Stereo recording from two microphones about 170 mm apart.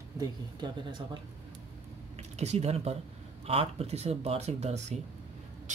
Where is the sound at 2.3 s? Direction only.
40° right (ahead or behind).